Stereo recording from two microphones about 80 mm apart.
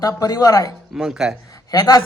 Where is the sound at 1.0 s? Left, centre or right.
Centre.